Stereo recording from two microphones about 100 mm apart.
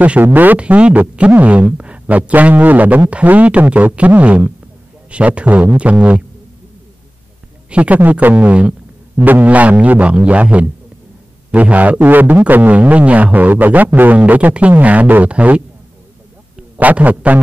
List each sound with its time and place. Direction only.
0.0 s speech: 15° right (ahead or behind)
7.7 s speech: 15° right (ahead or behind)
16.7 s speech: 15° right (ahead or behind)